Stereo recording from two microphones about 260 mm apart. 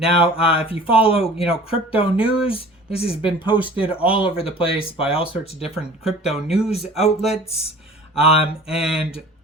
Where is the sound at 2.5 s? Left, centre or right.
Left.